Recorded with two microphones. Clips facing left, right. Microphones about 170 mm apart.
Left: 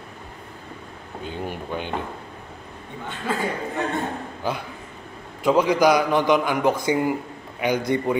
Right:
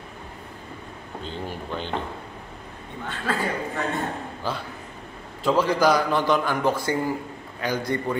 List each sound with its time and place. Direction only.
1.2 s a man's voice: 10° left (ahead or behind)
3.1 s a man's voice: 15° left (ahead or behind)
5.4 s a man's voice: 15° left (ahead or behind)